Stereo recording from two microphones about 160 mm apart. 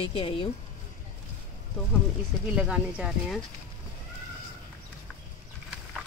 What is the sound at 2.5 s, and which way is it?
Speech, 5° right (ahead or behind).